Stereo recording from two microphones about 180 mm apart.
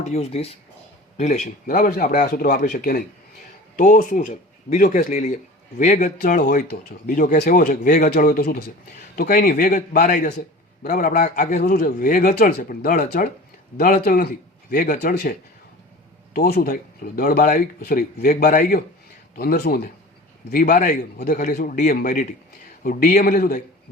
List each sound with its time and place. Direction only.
0.0 s speech: 35° left (ahead or behind); by 23.6 s 55° left (ahead or behind)